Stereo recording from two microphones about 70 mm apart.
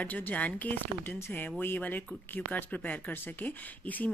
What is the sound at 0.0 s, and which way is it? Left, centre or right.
Speech, left.